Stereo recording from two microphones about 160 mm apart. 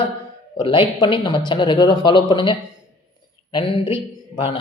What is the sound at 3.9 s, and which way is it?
Speech, 30° left (ahead or behind).